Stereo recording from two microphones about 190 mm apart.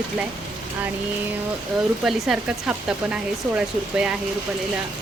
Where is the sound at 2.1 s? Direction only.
5° right (ahead or behind).